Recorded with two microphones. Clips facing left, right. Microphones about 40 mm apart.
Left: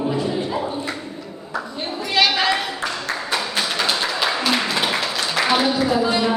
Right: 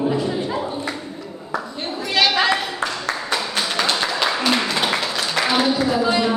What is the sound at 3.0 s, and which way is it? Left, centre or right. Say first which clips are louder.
Music: even; centre.